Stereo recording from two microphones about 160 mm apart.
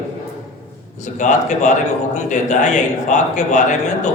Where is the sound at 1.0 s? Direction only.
50° left (ahead or behind).